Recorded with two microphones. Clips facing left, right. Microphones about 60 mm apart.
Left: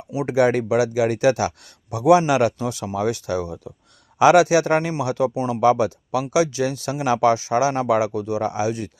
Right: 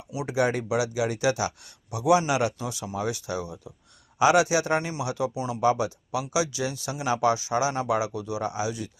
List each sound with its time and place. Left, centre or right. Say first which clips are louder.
0.1 s speech: left 7 dB; left
0.3 s speech: left 7 dB; left
4.2 s a man's voice: left 6 dB; left
5.5 s speech: left 6 dB; left